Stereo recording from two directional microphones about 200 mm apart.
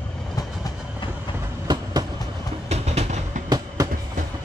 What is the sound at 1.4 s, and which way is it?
Train, 20° right (ahead or behind).